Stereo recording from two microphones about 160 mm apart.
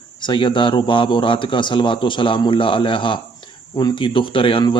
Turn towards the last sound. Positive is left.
turn(degrees=30)  # may be behind; listen again after turning